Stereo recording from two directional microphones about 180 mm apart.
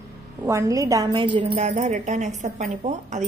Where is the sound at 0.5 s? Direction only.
15° right (ahead or behind).